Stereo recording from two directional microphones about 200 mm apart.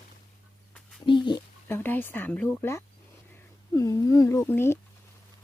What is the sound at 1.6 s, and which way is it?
Speech, 10° left (ahead or behind).